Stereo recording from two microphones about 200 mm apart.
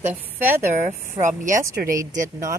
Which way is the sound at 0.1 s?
10° right (ahead or behind).